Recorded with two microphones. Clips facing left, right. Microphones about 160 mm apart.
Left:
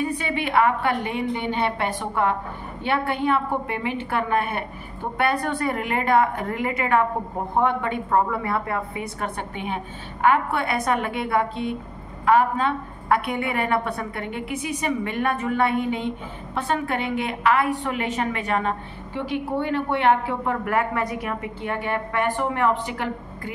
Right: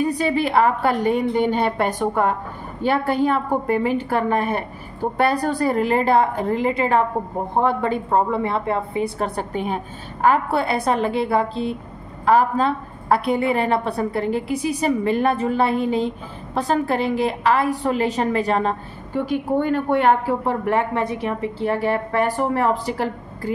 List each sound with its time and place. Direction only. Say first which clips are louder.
0.0 s a woman's voice: right 6 dB; 35° right (ahead or behind)
20.6 s a woman's voice: right 3 dB; 25° right (ahead or behind)